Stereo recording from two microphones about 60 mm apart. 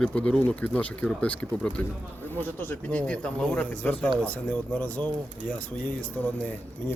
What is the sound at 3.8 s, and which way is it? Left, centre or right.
Speech, left.